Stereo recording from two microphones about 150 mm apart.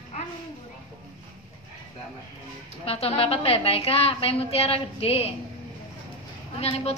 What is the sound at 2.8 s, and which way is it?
A woman's voice, 40° left (ahead or behind).